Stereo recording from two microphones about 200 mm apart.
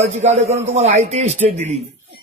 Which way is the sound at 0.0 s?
35° right (ahead or behind).